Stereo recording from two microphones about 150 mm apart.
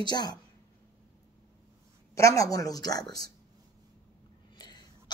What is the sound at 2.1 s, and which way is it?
Speech, 20° left (ahead or behind).